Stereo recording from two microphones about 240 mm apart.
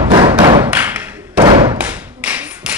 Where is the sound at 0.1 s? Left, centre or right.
Centre.